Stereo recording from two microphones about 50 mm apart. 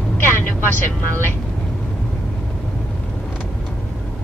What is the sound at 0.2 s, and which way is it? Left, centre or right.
Speech, left.